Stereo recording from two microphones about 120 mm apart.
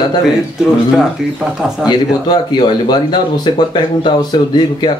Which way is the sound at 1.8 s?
35° left (ahead or behind).